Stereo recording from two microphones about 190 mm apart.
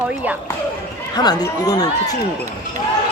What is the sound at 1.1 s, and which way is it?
Speech, 20° left (ahead or behind).